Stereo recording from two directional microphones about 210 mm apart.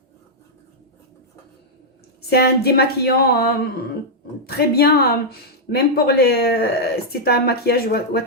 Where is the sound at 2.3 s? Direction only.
50° left (ahead or behind).